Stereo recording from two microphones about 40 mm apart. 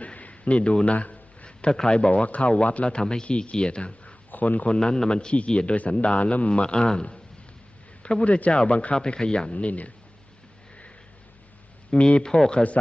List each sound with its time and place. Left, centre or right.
0.0 s a sound: left
1.7 s a man's voice: centre
2.0 s speech: left
4.3 s a man's voice: left
4.7 s speech: centre
5.8 s speech: left
8.9 s speech: left
11.9 s speech: left